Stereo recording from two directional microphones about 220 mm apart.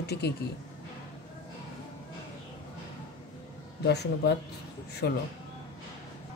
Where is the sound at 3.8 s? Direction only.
50° left (ahead or behind).